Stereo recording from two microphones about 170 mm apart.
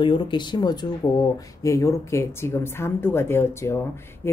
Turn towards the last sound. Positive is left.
turn(degrees=15)  # may be behind; listen again after turning